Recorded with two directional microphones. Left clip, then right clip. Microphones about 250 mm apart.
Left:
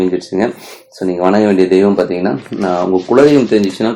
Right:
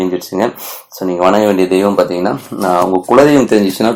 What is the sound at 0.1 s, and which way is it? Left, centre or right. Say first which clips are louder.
Speech: even; centre.